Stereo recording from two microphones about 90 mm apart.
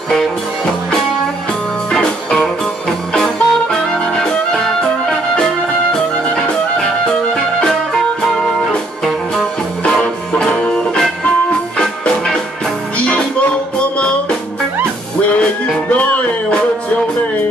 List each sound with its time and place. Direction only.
1.9 s music: 5° left (ahead or behind)
7.6 s music: 5° left (ahead or behind)
15.6 s music: 15° left (ahead or behind)